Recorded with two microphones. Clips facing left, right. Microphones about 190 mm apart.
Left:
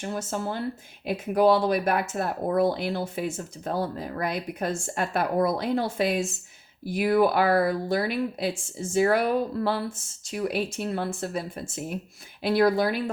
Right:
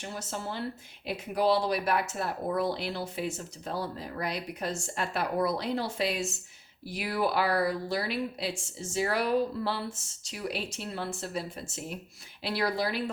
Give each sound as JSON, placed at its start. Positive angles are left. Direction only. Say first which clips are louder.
{"t": 0.0, "sound": "speech", "louder": "left 7 dB", "side_deg": 50}